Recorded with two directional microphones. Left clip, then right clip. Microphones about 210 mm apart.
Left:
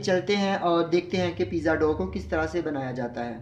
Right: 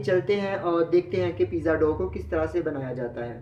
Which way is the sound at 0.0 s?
45° left (ahead or behind).